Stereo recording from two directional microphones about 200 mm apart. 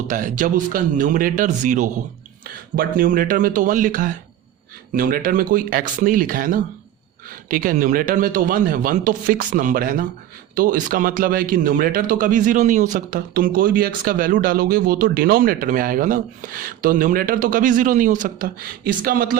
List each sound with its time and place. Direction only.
0.1 s a man's voice: 40° right (ahead or behind)